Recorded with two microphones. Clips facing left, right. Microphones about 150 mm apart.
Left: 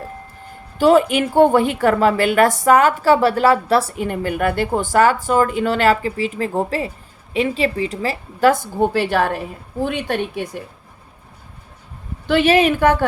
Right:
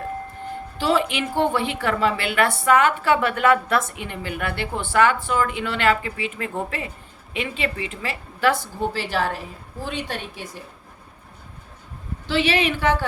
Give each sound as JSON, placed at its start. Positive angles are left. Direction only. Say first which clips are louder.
{"t": 0.8, "sound": "a woman's voice", "louder": "left 9 dB", "side_deg": 45}
{"t": 12.3, "sound": "a woman's voice", "louder": "left 7 dB", "side_deg": 50}